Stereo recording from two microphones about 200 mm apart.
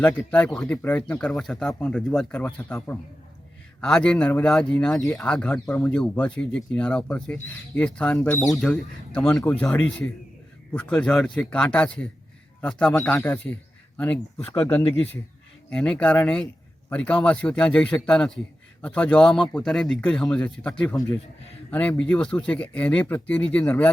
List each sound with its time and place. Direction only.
0.0 s speech: 10° left (ahead or behind)